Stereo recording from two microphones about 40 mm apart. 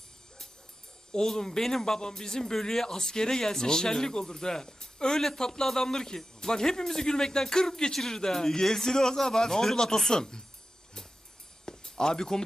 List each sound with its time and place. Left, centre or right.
1.1 s speech: centre
11.6 s music: centre